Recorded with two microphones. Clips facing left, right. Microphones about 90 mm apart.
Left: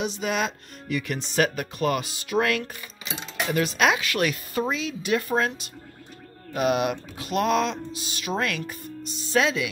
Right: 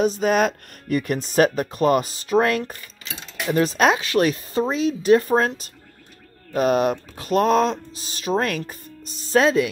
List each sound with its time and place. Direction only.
0.0 s speech: 40° right (ahead or behind)